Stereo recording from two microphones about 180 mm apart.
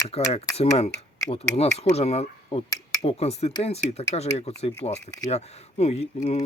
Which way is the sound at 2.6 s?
25° left (ahead or behind).